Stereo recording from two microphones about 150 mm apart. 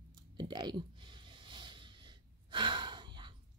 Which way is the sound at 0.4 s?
30° right (ahead or behind).